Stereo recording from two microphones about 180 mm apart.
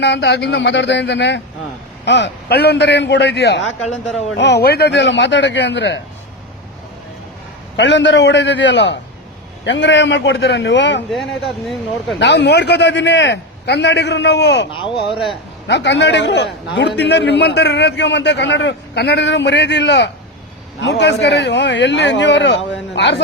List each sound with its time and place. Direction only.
0.0 s a man's voice: 70° left (ahead or behind)
4.4 s a man's voice: 70° left (ahead or behind)
7.8 s a man's voice: 80° left
11.1 s speech: centre (ahead or behind)
12.2 s a man's voice: 70° left (ahead or behind)
14.7 s speech: 30° left (ahead or behind)
15.6 s a man's voice: 75° left (ahead or behind)